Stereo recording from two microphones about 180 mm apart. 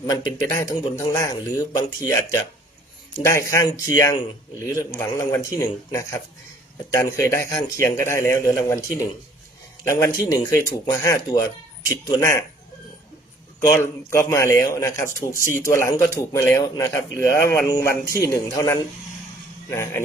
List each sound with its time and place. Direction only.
0.1 s a man's voice: 20° left (ahead or behind)
13.6 s a man's voice: 15° left (ahead or behind)